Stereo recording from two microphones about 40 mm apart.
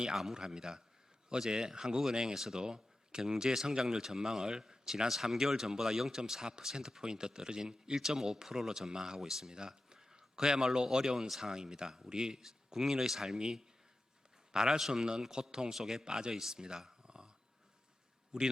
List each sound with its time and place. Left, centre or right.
0.3 s a man's voice: centre
18.3 s speech: centre